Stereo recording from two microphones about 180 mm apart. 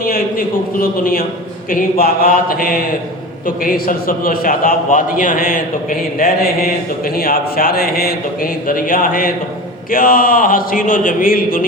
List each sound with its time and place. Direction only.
0.0 s a man's voice: 50° left (ahead or behind)